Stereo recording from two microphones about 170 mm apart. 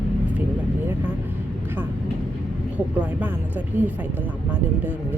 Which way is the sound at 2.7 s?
10° right (ahead or behind).